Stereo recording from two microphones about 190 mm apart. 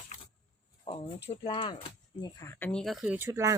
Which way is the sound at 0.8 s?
30° left (ahead or behind).